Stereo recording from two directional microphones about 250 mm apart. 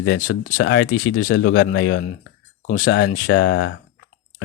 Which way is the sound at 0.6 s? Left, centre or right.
Left.